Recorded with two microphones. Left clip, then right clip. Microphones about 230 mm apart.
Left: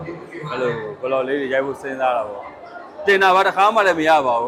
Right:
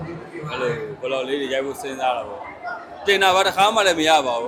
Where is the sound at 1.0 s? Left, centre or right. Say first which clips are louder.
Left 3 dB; left.